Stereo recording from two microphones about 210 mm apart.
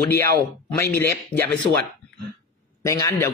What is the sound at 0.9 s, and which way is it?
Speech, 10° left (ahead or behind).